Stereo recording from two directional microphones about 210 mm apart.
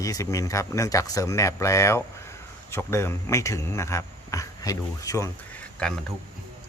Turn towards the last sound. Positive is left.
turn(degrees=5)  # may be behind; listen again after turning